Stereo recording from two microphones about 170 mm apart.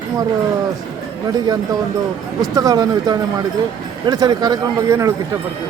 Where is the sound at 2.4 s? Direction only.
20° right (ahead or behind).